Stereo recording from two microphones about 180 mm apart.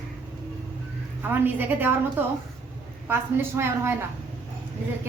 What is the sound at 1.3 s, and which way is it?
A woman's voice, 10° right (ahead or behind).